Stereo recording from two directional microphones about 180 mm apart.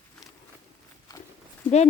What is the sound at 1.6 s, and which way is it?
Speech, 5° left (ahead or behind).